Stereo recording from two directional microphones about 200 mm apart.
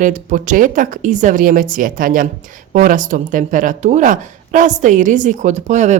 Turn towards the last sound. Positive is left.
turn(degrees=-35)  # may be behind; listen again after turning